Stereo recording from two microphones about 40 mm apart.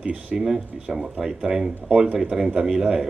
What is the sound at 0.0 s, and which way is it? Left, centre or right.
Speech, right.